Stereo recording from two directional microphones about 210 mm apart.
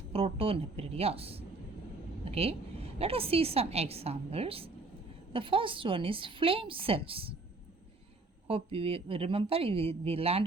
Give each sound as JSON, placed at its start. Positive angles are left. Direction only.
{"t": 0.1, "sound": "a woman's voice", "side_deg": -25}
{"t": 8.4, "sound": "a woman's voice", "side_deg": -25}